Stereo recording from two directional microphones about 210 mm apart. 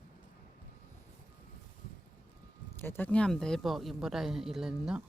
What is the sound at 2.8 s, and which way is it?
Speech, 10° left (ahead or behind).